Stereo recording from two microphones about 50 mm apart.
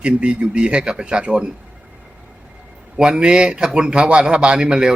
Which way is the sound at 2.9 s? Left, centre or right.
Centre.